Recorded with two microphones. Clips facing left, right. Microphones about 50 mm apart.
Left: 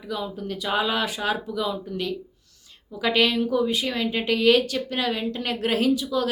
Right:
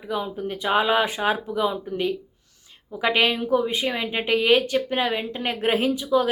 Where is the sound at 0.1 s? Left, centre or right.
Right.